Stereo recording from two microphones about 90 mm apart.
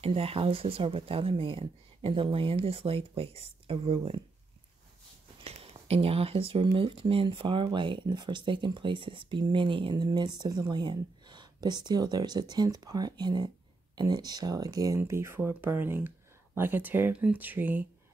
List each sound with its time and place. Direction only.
0.0 s speech: 90° right
5.4 s speech: 90° right; by 10.0 s 65° right (ahead or behind)
10.0 s speech: 55° right (ahead or behind)
15.0 s speech: 30° right (ahead or behind)